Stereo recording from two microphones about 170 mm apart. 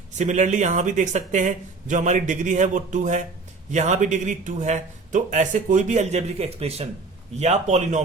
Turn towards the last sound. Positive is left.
turn(degrees=-45)  # may be behind; listen again after turning